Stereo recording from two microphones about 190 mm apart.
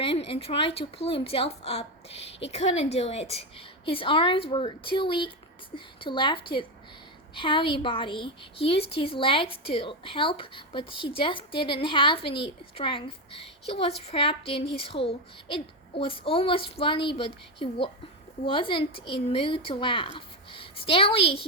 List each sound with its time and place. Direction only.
0.0 s a woman's voice: 30° left (ahead or behind)